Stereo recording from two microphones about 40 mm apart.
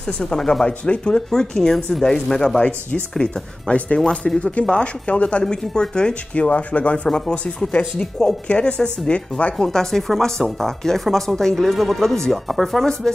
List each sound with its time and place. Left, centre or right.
0.4 s speech: centre
0.7 s speech: left
2.6 s speech: left
5.4 s speech: centre
6.3 s speech: left
7.1 s speech: left
9.6 s speech: centre
11.6 s speech: centre
13.0 s speech: centre